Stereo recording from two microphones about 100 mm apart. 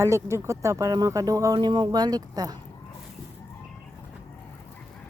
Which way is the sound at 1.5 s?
50° right (ahead or behind).